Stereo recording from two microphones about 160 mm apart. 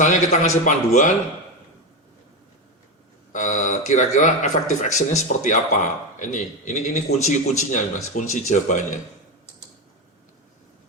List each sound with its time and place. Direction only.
0.0 s speech: 50° left (ahead or behind)
3.3 s speech: 50° left (ahead or behind)